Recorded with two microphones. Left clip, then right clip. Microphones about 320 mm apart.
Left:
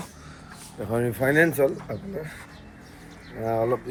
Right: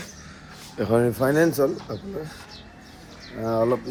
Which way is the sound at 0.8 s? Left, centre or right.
Right.